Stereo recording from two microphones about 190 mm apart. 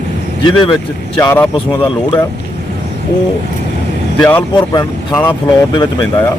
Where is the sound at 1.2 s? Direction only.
15° left (ahead or behind).